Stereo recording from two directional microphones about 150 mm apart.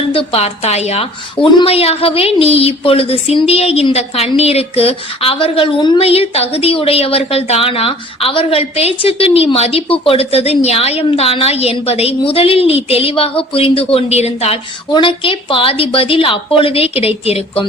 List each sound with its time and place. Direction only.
0.1 s a woman's voice: 40° left (ahead or behind)